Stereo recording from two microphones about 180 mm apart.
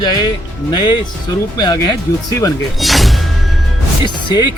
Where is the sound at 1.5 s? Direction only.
20° left (ahead or behind).